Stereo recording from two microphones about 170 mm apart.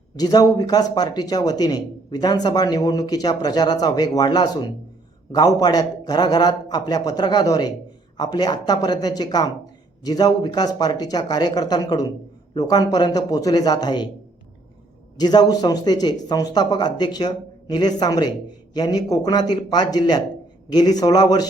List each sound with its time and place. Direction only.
0.2 s speech: 25° left (ahead or behind)
15.2 s speech: 25° left (ahead or behind)